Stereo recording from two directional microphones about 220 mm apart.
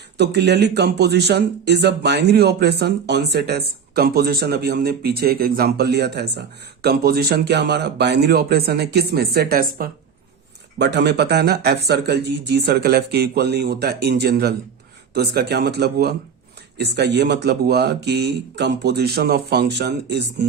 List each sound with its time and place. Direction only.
0.2 s speech: 50° right (ahead or behind)